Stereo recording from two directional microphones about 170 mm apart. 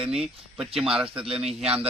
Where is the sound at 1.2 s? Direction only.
35° right (ahead or behind).